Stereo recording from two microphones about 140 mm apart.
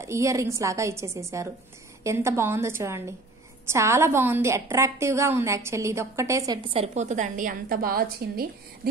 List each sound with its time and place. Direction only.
0.0 s a woman's voice: 20° right (ahead or behind)
6.7 s a woman's voice: 50° right (ahead or behind); by 8.5 s 90° right